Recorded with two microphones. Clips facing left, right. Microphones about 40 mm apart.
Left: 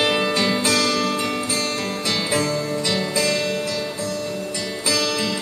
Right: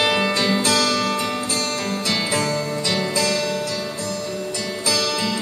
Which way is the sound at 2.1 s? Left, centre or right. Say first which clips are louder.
Left 1 dB; centre.